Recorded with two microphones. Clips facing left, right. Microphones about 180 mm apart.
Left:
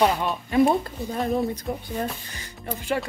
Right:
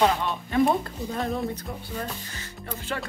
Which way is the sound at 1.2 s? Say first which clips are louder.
Left 5 dB; 20° left (ahead or behind).